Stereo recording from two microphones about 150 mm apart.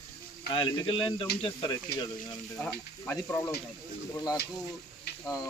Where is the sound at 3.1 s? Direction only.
15° left (ahead or behind).